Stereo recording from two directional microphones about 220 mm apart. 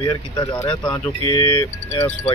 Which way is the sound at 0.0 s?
20° left (ahead or behind).